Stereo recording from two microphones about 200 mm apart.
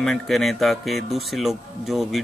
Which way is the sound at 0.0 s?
Centre (ahead or behind).